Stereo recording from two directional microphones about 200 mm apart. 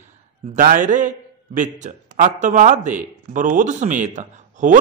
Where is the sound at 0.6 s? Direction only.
40° right (ahead or behind).